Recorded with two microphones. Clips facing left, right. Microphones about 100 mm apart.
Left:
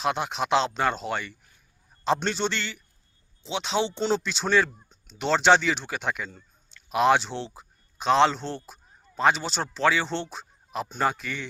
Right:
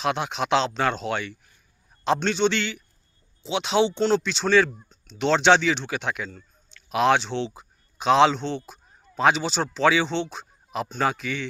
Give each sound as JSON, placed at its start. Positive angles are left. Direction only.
{"t": 0.0, "sound": "speech", "side_deg": 0}